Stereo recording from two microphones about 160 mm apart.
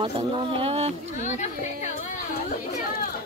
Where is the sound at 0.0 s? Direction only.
35° right (ahead or behind).